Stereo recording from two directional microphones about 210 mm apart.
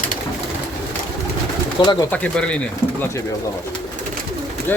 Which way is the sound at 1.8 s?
20° left (ahead or behind).